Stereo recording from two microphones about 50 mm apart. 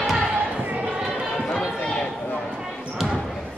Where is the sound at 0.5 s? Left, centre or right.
Right.